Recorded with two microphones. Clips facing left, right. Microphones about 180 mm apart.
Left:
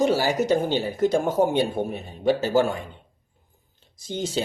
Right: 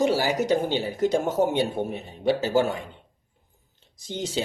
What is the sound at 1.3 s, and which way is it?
Speech, 15° left (ahead or behind).